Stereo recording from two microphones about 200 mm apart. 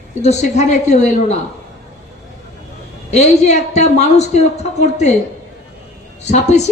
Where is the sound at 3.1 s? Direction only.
35° left (ahead or behind).